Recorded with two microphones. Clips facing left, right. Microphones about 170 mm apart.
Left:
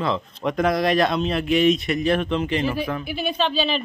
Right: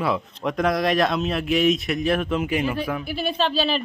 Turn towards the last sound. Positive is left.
turn(degrees=-5)  # may be behind; listen again after turning